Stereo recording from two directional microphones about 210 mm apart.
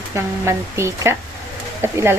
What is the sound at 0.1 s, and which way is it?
Speech, 15° right (ahead or behind).